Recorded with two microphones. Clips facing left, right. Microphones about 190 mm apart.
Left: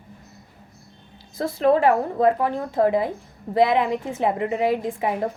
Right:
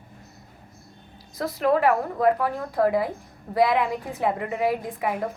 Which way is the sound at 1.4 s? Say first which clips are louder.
Left 3 dB; 25° left (ahead or behind).